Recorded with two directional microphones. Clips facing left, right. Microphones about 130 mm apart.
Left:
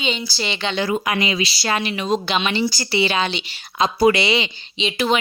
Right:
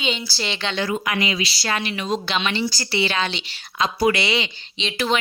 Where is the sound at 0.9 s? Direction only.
25° left (ahead or behind).